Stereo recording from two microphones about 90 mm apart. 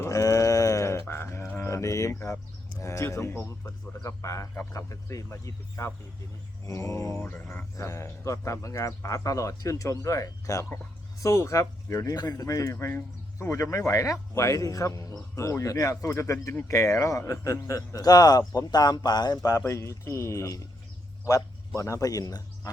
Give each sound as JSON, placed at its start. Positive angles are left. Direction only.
{"t": 0.0, "sound": "a sound", "side_deg": 40}
{"t": 2.8, "sound": "a man's voice", "side_deg": 35}
{"t": 7.2, "sound": "a man's voice", "side_deg": 20}
{"t": 12.7, "sound": "a man's voice", "side_deg": 25}
{"t": 21.8, "sound": "a man's voice", "side_deg": 35}